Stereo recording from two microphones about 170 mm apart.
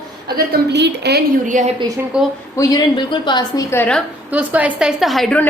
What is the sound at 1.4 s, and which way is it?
Speech, 50° right (ahead or behind).